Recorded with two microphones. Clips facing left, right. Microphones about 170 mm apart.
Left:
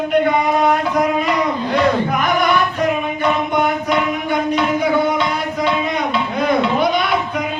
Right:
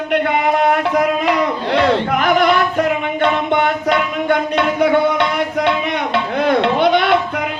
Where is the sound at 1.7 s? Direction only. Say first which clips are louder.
Right 2 dB; 75° right (ahead or behind).